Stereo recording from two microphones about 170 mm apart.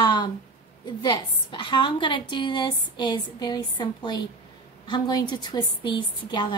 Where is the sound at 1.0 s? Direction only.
30° left (ahead or behind).